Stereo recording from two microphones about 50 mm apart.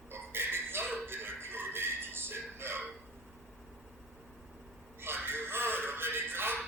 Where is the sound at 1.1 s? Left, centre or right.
Right.